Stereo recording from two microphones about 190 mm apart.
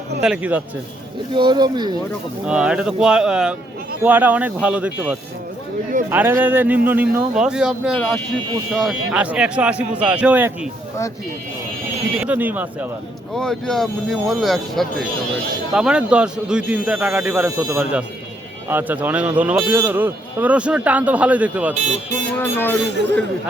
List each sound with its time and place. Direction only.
0.2 s a man's voice: 5° right (ahead or behind)
1.3 s speech: 25° right (ahead or behind)
2.5 s a man's voice: 5° right (ahead or behind)
12.2 s a man's voice: 10° right (ahead or behind)
13.3 s a man's voice: centre (ahead or behind)
21.8 s speech: 35° right (ahead or behind)
22.4 s speech: 10° left (ahead or behind)
22.8 s speech: 65° right (ahead or behind)